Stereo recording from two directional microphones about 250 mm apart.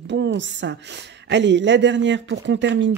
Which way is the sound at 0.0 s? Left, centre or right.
Right.